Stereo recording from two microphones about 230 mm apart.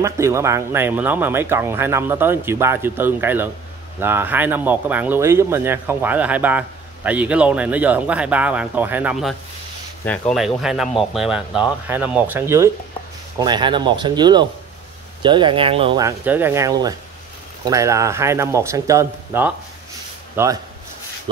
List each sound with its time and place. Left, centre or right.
0.0 s speech: centre
10.3 s speech: centre